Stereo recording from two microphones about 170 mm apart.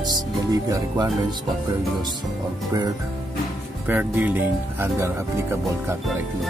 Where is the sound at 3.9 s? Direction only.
10° right (ahead or behind).